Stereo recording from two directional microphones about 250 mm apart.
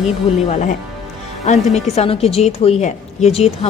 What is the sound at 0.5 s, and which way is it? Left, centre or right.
A woman's voice, left.